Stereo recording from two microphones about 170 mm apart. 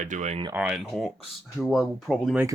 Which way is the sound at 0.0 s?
45° right (ahead or behind).